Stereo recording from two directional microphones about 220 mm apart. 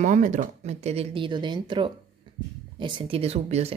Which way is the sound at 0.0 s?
35° right (ahead or behind).